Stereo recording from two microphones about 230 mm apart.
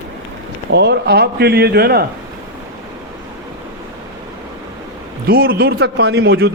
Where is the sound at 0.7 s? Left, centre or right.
Right.